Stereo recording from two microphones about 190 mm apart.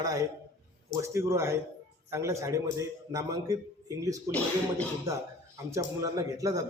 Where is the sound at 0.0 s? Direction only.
20° right (ahead or behind).